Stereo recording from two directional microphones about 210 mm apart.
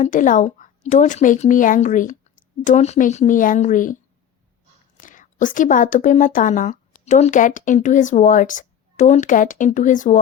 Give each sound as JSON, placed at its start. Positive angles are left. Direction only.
{"t": 0.0, "sound": "speech", "side_deg": 40}
{"t": 4.9, "sound": "a woman's voice", "side_deg": 40}